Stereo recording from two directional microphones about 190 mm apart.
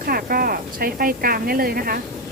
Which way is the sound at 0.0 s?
50° right (ahead or behind).